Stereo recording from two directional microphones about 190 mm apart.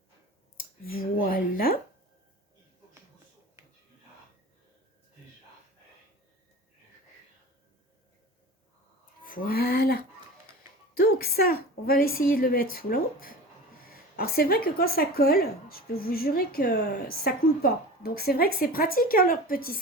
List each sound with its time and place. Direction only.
0.9 s a woman's voice: 50° left (ahead or behind)
9.2 s a woman's voice: 45° left (ahead or behind)